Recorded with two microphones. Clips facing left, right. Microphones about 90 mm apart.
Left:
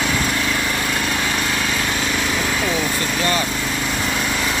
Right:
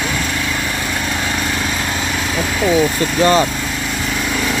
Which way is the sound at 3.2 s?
30° right (ahead or behind).